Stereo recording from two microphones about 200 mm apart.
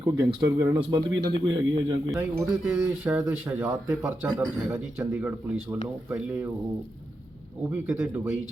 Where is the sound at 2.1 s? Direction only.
Centre (ahead or behind).